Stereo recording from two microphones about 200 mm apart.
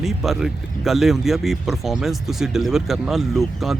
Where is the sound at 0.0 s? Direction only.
Centre (ahead or behind).